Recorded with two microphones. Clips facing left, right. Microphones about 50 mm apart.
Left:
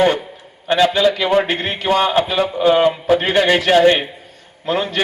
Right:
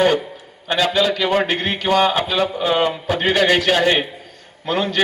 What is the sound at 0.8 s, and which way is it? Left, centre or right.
A man's voice, left.